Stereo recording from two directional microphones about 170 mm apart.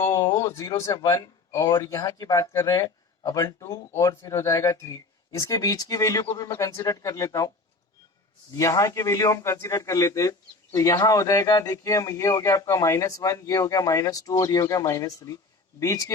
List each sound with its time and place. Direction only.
0.0 s a man's voice: 15° left (ahead or behind)
8.5 s a man's voice: 20° left (ahead or behind)